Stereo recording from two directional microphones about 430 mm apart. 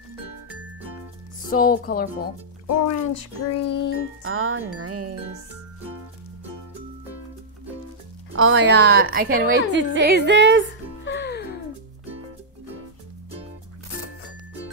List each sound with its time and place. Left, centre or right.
1.5 s speech: centre
2.9 s a child's voice: left
4.2 s speech: right
8.4 s a woman's voice: right
11.1 s music: left